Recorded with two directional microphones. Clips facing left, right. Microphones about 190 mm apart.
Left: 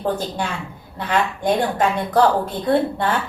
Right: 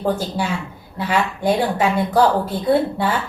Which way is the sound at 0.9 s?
5° right (ahead or behind).